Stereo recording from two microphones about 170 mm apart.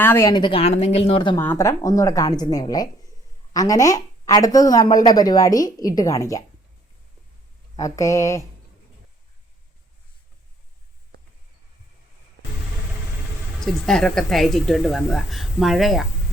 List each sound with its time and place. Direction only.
0.0 s a woman's voice: 15° left (ahead or behind)
0.3 s speech: 30° left (ahead or behind)
1.4 s speech: 15° left (ahead or behind)
7.8 s speech: 20° left (ahead or behind)
13.7 s a woman's voice: centre (ahead or behind)